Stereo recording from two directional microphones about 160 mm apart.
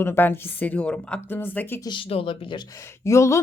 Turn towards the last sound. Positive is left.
turn(degrees=15)  # may be behind; listen again after turning